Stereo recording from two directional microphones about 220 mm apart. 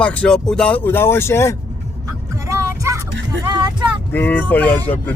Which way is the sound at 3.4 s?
20° right (ahead or behind).